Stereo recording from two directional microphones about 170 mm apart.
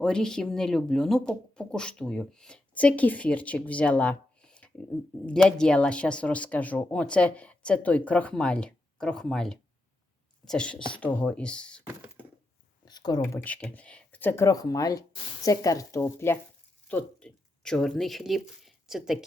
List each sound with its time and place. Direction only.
0.0 s speech: 5° left (ahead or behind)
12.8 s a sound: 25° left (ahead or behind)
13.2 s speech: 10° left (ahead or behind)